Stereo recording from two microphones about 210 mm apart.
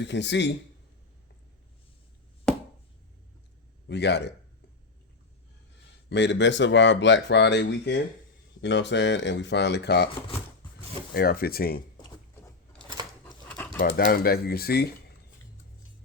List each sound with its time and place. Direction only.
0.0 s speech: 55° left (ahead or behind)
2.5 s chopping: 5° left (ahead or behind)
3.8 s speech: 55° left (ahead or behind)
6.1 s speech: 55° left (ahead or behind)
11.1 s speech: 45° left (ahead or behind)
13.7 s speech: 40° left (ahead or behind)